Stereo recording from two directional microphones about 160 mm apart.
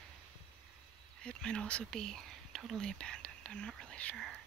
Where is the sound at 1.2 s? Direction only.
5° left (ahead or behind).